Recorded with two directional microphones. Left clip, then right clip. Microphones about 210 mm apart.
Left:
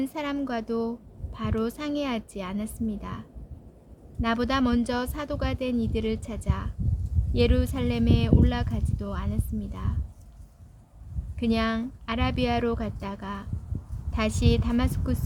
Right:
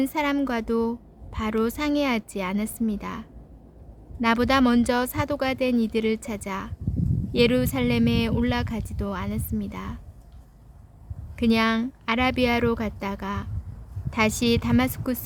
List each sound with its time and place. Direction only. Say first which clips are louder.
0.0 s a woman's voice: right 6 dB; 35° right (ahead or behind)
11.3 s a woman's voice: right 5 dB; 35° right (ahead or behind)